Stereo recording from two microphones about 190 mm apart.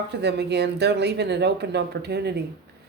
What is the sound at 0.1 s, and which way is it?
Speech, 60° right (ahead or behind).